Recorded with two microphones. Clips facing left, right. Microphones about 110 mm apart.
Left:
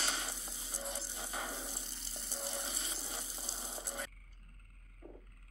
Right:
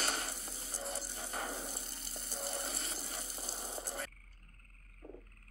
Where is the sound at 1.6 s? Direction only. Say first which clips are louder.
Right 2 dB; 50° right (ahead or behind).